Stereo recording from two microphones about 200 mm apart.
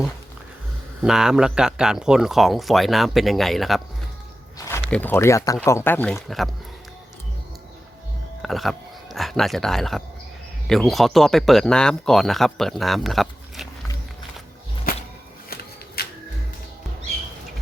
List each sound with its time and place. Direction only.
1.0 s speech: 5° right (ahead or behind)
8.4 s speech: centre (ahead or behind)
16.0 s music: 50° left (ahead or behind)